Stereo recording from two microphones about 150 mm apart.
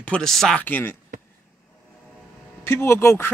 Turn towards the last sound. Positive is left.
turn(degrees=15)  # may be behind; listen again after turning